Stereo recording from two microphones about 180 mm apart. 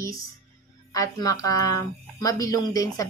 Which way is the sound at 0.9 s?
20° left (ahead or behind).